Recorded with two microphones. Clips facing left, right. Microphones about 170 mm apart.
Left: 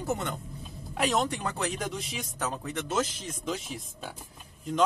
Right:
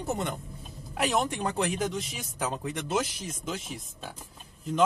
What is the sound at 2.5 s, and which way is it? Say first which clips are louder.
Speech: even; 15° right (ahead or behind).